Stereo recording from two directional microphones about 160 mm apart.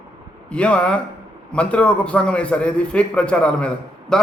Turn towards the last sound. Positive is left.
turn(degrees=5)  # may be behind; listen again after turning